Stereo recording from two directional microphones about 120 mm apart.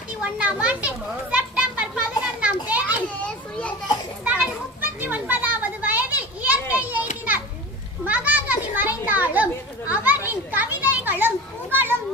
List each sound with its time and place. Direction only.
0.2 s children playing: 10° right (ahead or behind)
4.2 s children playing: 15° right (ahead or behind)